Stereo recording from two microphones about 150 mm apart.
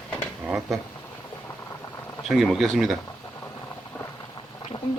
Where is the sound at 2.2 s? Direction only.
Centre (ahead or behind).